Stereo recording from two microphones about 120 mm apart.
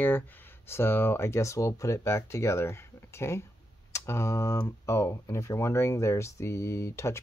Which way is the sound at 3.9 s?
25° left (ahead or behind).